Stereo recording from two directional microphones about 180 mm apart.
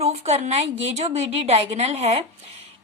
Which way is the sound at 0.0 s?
35° right (ahead or behind).